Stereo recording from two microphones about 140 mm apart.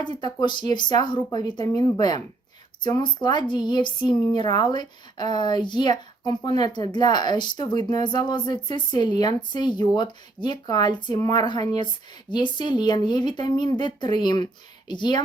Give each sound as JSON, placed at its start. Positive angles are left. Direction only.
{"t": 0.0, "sound": "speech", "side_deg": 30}